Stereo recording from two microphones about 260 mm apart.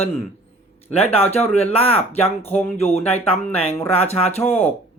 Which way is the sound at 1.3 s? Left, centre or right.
Left.